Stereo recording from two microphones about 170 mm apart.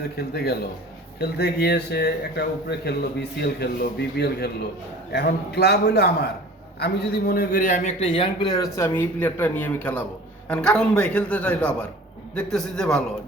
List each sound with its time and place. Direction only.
0.2 s a man's voice: 70° left (ahead or behind); by 13.0 s 5° left (ahead or behind)